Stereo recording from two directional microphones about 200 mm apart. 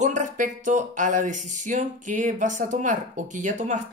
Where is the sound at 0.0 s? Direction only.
40° right (ahead or behind).